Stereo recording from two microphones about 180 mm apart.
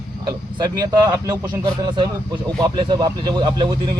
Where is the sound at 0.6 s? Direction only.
25° right (ahead or behind).